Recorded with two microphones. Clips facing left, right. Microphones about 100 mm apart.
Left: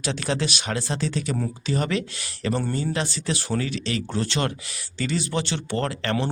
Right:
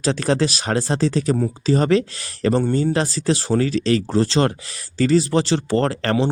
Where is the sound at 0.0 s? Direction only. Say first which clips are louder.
Right 7 dB; 40° right (ahead or behind).